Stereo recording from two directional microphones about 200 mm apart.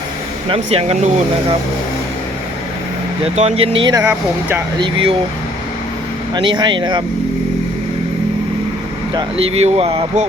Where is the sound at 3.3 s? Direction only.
30° right (ahead or behind); by 4.6 s 10° right (ahead or behind).